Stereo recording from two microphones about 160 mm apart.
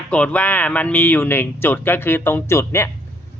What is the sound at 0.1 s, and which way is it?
Speech, 10° left (ahead or behind).